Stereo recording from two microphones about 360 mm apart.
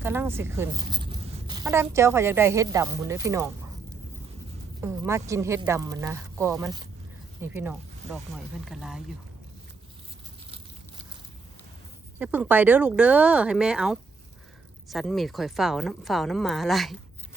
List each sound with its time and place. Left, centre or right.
0.0 s speech: centre
4.8 s speech: centre
8.0 s speech: centre
8.6 s speech: centre
12.2 s speech: centre